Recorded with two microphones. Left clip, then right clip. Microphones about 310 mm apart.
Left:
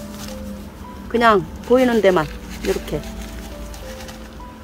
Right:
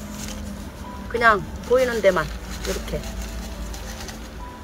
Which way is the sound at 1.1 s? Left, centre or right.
Left.